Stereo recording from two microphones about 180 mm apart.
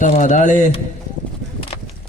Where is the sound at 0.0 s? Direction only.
45° left (ahead or behind).